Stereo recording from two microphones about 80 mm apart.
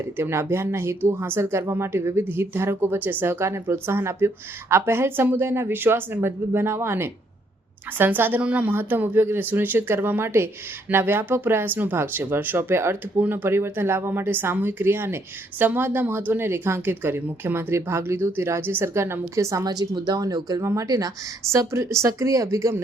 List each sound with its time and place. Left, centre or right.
0.2 s speech: right; by 8.7 s centre
8.7 s speech: right
19.6 s a woman's voice: right
20.6 s speech: right
20.8 s speech: right
21.5 s speech: right